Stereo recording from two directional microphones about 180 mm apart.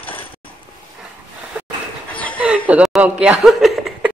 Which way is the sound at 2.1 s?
10° left (ahead or behind).